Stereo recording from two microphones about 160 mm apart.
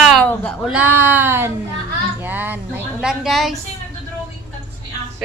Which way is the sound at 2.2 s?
10° right (ahead or behind).